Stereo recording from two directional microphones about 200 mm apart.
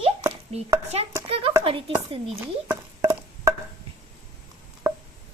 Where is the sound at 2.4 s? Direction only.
10° right (ahead or behind).